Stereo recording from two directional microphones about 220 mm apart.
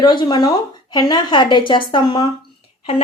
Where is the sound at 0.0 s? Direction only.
20° left (ahead or behind).